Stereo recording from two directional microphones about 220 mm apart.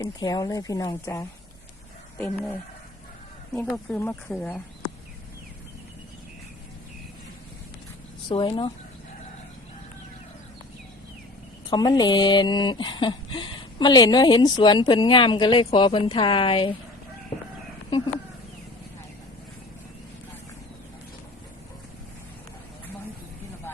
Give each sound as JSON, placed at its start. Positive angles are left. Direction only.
{"t": 0.0, "sound": "speech", "side_deg": 15}
{"t": 3.5, "sound": "speech", "side_deg": 5}
{"t": 8.3, "sound": "speech", "side_deg": 20}
{"t": 11.7, "sound": "speech", "side_deg": 20}